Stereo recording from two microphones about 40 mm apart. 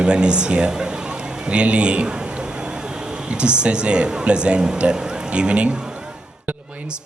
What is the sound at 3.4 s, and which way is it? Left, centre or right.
Speech, right.